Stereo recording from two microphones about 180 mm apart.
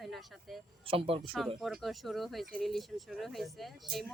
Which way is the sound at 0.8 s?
30° right (ahead or behind).